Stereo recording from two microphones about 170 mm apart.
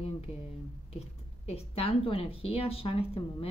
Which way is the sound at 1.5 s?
35° left (ahead or behind).